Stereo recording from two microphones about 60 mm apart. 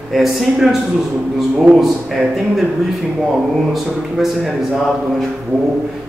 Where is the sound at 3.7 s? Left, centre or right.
Centre.